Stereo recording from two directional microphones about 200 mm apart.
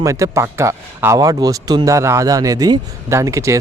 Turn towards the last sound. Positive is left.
turn(degrees=-15)  # may be behind; listen again after turning